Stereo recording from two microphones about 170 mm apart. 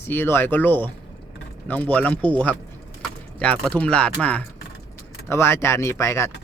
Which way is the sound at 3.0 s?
10° left (ahead or behind).